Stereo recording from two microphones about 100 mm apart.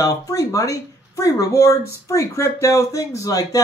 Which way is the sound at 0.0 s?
35° left (ahead or behind).